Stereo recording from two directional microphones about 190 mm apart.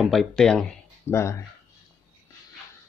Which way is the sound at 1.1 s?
15° left (ahead or behind).